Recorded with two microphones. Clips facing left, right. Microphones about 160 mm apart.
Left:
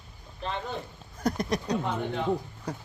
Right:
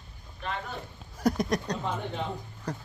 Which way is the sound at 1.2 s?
Centre (ahead or behind).